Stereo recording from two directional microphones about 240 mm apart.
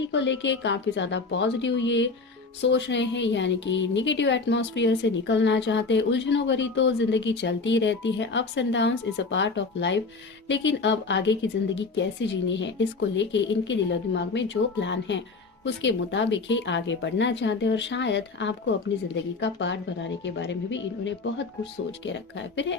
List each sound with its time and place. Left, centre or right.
0.1 s speech: left